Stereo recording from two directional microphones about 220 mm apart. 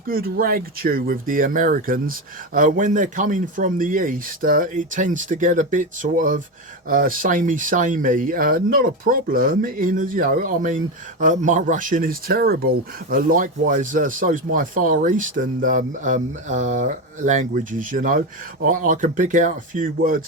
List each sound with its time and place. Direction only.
0.1 s speech: 40° right (ahead or behind)